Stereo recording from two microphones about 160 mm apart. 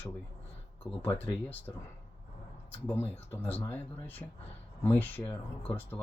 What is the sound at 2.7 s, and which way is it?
Speech, 10° left (ahead or behind).